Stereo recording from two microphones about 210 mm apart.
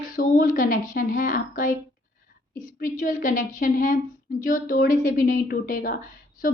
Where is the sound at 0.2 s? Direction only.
40° left (ahead or behind).